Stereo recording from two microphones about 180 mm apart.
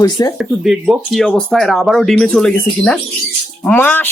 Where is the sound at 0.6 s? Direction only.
Centre (ahead or behind).